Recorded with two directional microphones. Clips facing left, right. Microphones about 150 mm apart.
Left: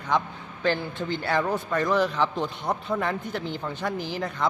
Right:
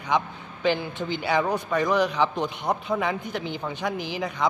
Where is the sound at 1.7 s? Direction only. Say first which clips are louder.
Right 1 dB; 5° right (ahead or behind).